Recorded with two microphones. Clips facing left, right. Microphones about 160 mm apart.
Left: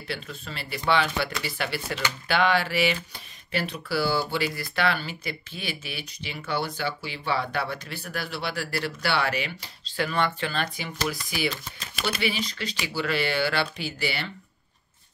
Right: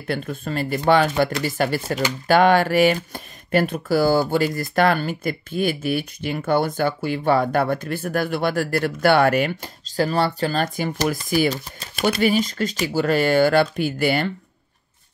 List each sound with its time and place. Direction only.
0.0 s speech: 50° right (ahead or behind)